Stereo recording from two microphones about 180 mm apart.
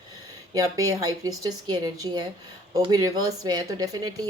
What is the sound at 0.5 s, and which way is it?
Speech, 20° right (ahead or behind).